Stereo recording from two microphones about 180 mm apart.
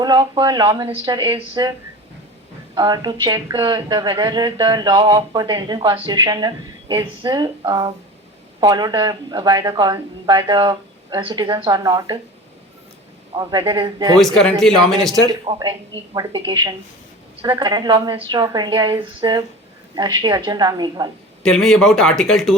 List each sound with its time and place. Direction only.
0.0 s a woman's voice: 25° right (ahead or behind)
2.7 s a woman's voice: 25° right (ahead or behind)
13.3 s a woman's voice: 25° right (ahead or behind)
14.2 s speech: centre (ahead or behind)
15.3 s a woman's voice: 25° right (ahead or behind)
21.4 s speech: centre (ahead or behind)